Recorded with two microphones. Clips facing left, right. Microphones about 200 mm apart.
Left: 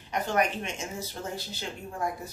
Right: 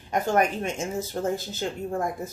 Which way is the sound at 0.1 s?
45° right (ahead or behind).